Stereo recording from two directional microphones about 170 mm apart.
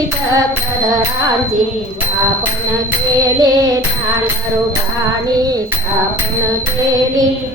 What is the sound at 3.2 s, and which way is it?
Music, 20° right (ahead or behind).